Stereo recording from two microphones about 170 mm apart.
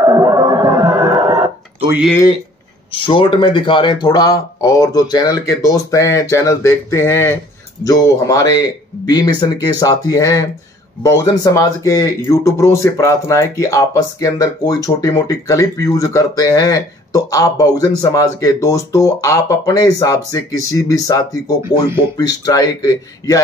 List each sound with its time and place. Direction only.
0.0 s music: 20° right (ahead or behind)
2.9 s speech: 30° left (ahead or behind)